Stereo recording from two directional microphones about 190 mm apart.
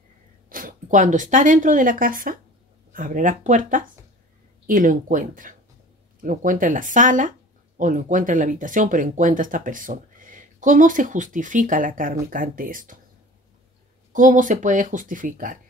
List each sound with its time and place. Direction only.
0.5 s speech: 45° right (ahead or behind)
14.1 s speech: 45° right (ahead or behind)